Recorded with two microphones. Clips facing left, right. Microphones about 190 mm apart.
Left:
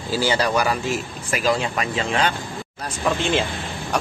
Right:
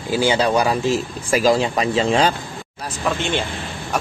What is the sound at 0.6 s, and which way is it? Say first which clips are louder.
Speech: right 4 dB; 30° right (ahead or behind).